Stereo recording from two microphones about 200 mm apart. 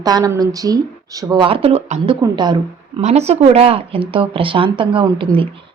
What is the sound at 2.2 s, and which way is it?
Speech, 20° right (ahead or behind).